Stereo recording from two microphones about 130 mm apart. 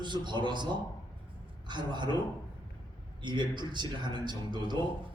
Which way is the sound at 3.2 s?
35° right (ahead or behind).